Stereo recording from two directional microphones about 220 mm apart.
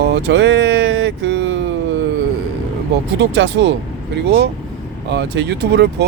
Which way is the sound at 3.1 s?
50° right (ahead or behind).